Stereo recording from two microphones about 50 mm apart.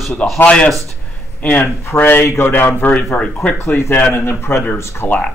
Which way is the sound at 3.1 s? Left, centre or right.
Left.